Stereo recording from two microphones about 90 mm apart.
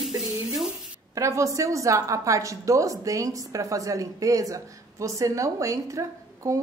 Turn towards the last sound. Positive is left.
turn(degrees=-35)  # may be behind; listen again after turning